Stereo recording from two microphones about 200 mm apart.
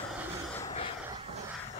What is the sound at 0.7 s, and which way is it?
Vehicle, 30° left (ahead or behind).